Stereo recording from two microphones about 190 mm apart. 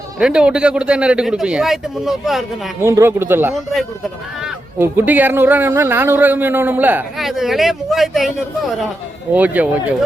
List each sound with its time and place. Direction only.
0.2 s a man's voice: 5° right (ahead or behind)
2.8 s speech: 15° right (ahead or behind)
9.3 s speech: 10° right (ahead or behind)